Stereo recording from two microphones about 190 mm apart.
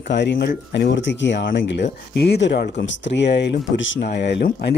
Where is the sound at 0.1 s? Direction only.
65° left (ahead or behind).